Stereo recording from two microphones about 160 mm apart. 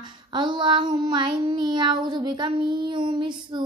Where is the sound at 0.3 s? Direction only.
30° right (ahead or behind).